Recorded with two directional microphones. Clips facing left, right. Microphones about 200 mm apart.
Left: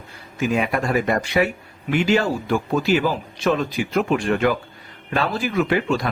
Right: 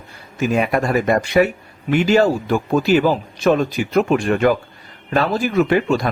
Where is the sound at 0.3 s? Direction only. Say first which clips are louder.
Right 3 dB; 45° right (ahead or behind).